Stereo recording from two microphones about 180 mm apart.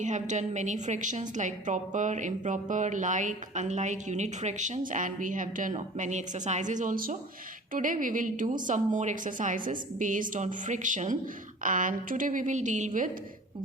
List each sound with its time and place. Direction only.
0.0 s a woman's voice: 45° right (ahead or behind)